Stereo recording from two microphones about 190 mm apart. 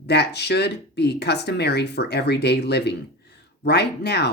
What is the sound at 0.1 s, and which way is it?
Speech, 60° left (ahead or behind).